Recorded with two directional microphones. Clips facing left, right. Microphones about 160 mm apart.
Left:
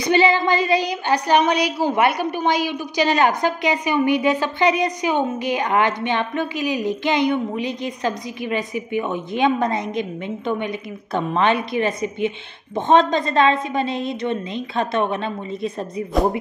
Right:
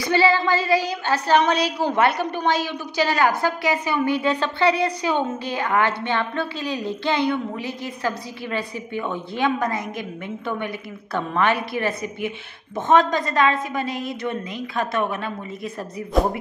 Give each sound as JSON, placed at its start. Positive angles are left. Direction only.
{"t": 0.0, "sound": "a woman's voice", "side_deg": 20}